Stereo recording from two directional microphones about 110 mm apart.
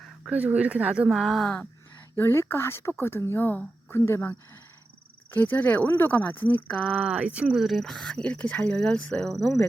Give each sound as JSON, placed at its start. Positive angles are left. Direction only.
{"t": 0.3, "sound": "speech", "side_deg": -15}
{"t": 1.2, "sound": "speech", "side_deg": 0}
{"t": 2.1, "sound": "speech", "side_deg": 25}
{"t": 6.8, "sound": "speech", "side_deg": -10}